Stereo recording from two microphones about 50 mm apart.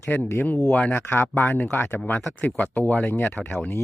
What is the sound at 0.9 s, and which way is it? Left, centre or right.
Speech, left.